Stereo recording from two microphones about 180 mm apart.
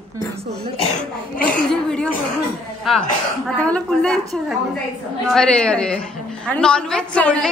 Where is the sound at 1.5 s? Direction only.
5° left (ahead or behind).